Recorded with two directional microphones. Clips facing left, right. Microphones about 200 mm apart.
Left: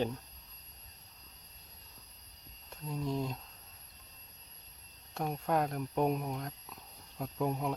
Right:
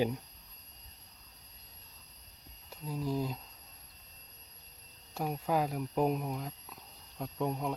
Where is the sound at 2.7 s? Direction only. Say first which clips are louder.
Right 1 dB; 5° right (ahead or behind).